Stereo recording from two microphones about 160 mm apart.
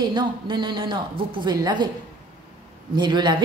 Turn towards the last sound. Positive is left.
turn(degrees=-30)  # may be behind; listen again after turning